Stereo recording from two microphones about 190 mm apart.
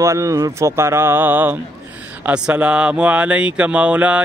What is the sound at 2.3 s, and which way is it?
Speech, 5° right (ahead or behind).